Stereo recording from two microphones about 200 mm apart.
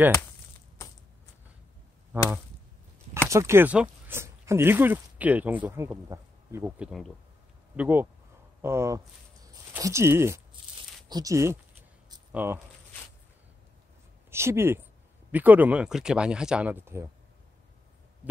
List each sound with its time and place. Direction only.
0.8 s coin: 15° left (ahead or behind)
3.3 s speech: 15° right (ahead or behind)
14.3 s speech: 15° right (ahead or behind)